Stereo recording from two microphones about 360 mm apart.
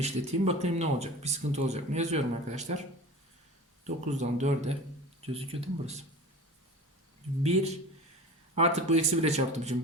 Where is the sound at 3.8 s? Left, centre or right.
Centre.